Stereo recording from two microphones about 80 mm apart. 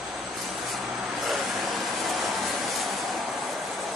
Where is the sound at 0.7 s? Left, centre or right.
Centre.